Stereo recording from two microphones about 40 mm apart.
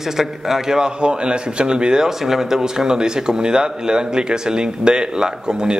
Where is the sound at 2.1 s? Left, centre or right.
Centre.